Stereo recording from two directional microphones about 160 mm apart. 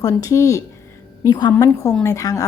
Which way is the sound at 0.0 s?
20° left (ahead or behind).